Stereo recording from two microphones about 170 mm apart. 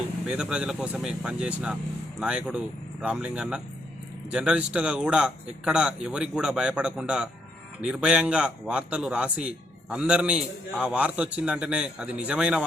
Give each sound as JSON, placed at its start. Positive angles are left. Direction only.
{"t": 0.3, "sound": "a man's voice", "side_deg": -5}